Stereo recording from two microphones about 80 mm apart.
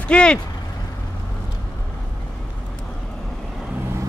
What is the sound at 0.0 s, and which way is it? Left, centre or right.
Speech, centre.